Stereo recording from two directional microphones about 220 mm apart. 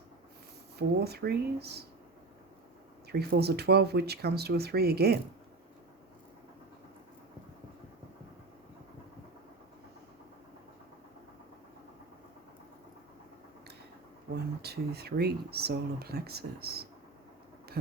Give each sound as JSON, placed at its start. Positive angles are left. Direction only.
{"t": 0.8, "sound": "speech", "side_deg": -45}
{"t": 3.1, "sound": "speech", "side_deg": -45}
{"t": 14.6, "sound": "speech", "side_deg": -45}